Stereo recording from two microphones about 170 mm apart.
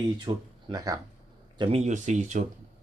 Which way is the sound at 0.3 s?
25° right (ahead or behind).